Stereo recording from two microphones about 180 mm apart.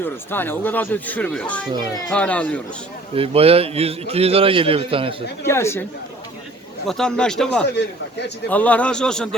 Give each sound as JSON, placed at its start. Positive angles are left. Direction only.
{"t": 0.0, "sound": "speech", "side_deg": 10}
{"t": 3.2, "sound": "a man's voice", "side_deg": -35}
{"t": 5.5, "sound": "speech", "side_deg": 15}
{"t": 6.8, "sound": "speech", "side_deg": 5}